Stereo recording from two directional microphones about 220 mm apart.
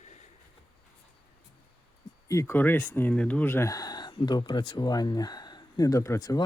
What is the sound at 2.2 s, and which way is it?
Speech, 15° left (ahead or behind).